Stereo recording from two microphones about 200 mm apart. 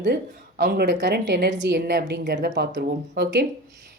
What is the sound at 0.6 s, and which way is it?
A woman's voice, 50° right (ahead or behind).